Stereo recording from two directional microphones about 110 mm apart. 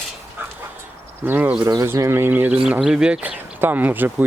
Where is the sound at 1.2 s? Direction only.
15° right (ahead or behind).